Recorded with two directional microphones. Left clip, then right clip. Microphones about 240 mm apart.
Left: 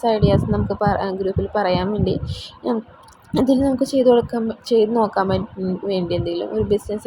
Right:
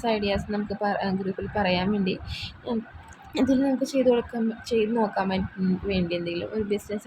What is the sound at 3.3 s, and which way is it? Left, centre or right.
Speech, centre.